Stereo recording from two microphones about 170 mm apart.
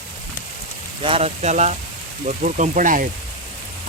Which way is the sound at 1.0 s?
35° right (ahead or behind).